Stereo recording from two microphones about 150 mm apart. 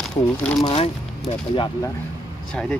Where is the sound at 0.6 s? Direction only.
40° left (ahead or behind).